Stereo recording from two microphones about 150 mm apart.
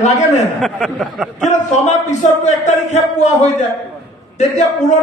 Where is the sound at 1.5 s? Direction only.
50° left (ahead or behind).